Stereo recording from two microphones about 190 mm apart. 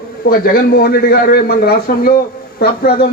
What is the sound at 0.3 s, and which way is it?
A man's voice, 55° left (ahead or behind).